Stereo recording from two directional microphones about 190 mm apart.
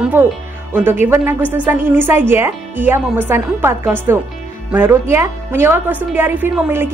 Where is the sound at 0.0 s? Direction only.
10° right (ahead or behind).